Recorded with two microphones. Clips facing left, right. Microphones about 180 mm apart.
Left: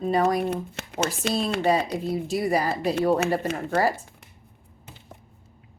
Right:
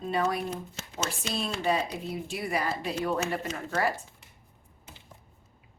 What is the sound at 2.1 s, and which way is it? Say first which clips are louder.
Speech: left 10 dB; 40° left (ahead or behind).